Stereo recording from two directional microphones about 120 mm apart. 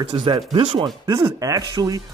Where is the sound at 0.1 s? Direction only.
45° right (ahead or behind).